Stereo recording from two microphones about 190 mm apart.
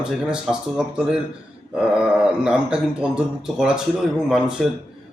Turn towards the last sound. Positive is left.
turn(degrees=-5)  # may be behind; listen again after turning